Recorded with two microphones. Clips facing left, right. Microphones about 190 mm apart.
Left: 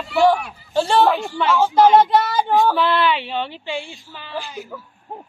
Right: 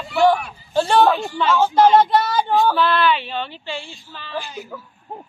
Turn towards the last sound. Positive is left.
turn(degrees=10)  # may be behind; listen again after turning